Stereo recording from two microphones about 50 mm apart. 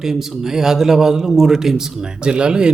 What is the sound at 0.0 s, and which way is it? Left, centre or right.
Speech, centre.